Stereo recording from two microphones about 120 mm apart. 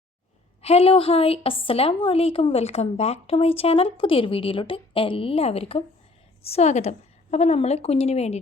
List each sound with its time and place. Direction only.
0.6 s a woman's voice: 55° left (ahead or behind)